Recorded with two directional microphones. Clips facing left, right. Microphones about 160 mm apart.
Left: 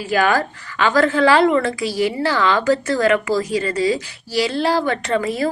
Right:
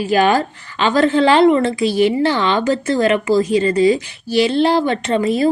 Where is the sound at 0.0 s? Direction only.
25° right (ahead or behind).